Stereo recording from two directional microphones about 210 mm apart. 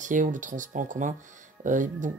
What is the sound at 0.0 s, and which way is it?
Speech, 35° right (ahead or behind).